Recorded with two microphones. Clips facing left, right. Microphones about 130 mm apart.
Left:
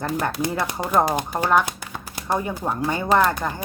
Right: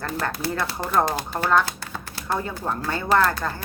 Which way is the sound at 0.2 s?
15° left (ahead or behind).